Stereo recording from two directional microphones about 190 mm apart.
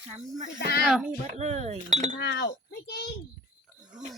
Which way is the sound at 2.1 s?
65° left (ahead or behind).